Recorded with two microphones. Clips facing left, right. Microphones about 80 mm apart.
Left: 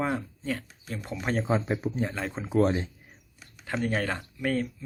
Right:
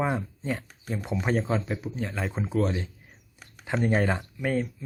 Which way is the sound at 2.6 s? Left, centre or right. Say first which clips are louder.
Left 4 dB; left.